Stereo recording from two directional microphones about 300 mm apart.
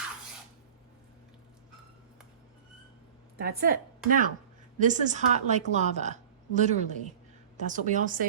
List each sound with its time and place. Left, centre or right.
3.3 s a woman's voice: right